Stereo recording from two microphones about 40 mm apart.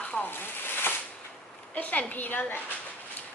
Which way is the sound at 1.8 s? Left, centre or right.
Left.